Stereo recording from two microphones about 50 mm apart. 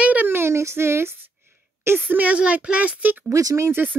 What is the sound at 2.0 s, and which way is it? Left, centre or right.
A woman's voice, right.